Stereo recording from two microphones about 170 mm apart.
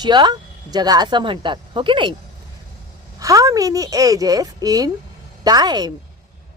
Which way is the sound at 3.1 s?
20° right (ahead or behind).